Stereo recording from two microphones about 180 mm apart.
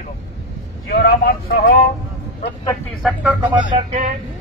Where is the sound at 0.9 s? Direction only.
65° left (ahead or behind).